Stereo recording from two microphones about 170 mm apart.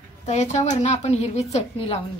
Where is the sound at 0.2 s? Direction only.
40° left (ahead or behind).